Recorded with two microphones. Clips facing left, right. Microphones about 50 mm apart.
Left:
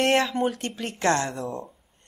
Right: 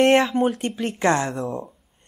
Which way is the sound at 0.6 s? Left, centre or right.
Centre.